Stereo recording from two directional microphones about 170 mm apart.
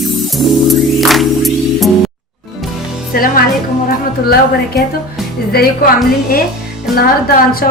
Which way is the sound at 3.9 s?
65° left (ahead or behind).